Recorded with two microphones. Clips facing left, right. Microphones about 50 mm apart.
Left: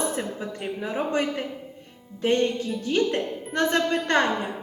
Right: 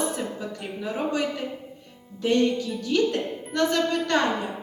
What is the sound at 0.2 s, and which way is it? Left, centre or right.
A woman's voice, left.